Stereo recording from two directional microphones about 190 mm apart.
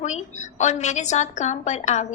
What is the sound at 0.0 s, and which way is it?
A woman's voice, 40° left (ahead or behind).